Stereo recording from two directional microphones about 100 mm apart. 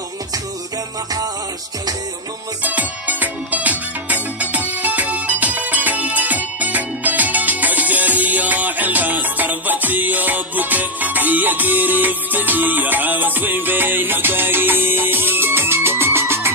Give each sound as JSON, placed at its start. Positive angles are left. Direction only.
{"t": 2.6, "sound": "music", "side_deg": -15}